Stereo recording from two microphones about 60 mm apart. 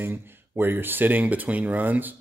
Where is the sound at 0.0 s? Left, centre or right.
Right.